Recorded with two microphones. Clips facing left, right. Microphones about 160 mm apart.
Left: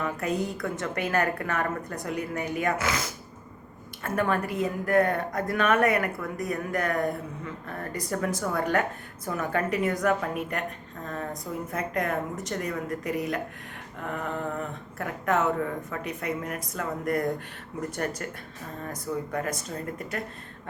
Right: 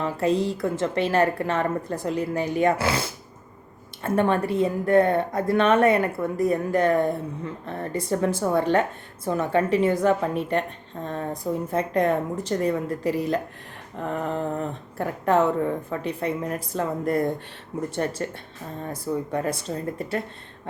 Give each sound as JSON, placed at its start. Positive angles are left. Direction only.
{"t": 0.0, "sound": "a woman's voice", "side_deg": -30}